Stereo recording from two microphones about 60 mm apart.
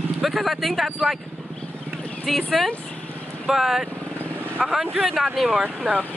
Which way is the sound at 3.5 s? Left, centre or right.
Centre.